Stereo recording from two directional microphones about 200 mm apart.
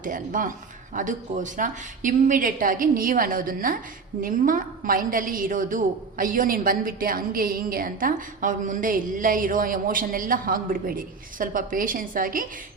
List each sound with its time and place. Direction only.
0.0 s a man's voice: 40° right (ahead or behind)